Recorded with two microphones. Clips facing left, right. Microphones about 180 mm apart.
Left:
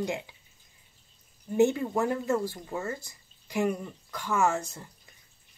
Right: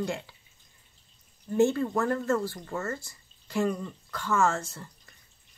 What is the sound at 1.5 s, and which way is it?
Speech, 15° left (ahead or behind).